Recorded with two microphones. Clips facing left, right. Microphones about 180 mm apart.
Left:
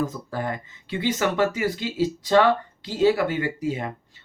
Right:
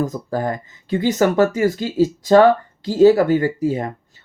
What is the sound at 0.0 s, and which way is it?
Speech, 40° right (ahead or behind).